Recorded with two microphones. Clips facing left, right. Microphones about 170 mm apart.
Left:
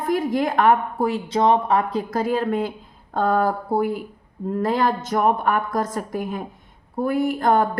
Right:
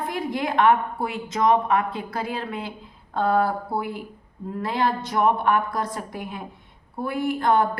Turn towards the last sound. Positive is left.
turn(degrees=45)  # may be behind; listen again after turning